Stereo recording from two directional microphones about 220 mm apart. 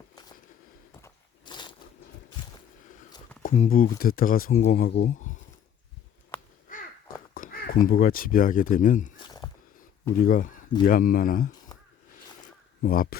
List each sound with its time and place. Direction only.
1.0 s a sound: 20° left (ahead or behind)
3.4 s speech: 35° left (ahead or behind)
6.7 s crow: 40° left (ahead or behind)
7.9 s speech: 40° left (ahead or behind)
9.1 s a sound: 20° left (ahead or behind)
10.2 s speech: 40° left (ahead or behind)
12.8 s speech: 40° left (ahead or behind)